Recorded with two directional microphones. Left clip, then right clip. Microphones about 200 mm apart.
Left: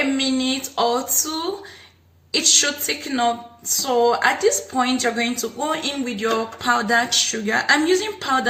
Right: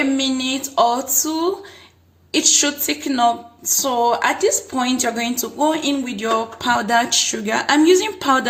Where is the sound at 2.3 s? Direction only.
55° right (ahead or behind).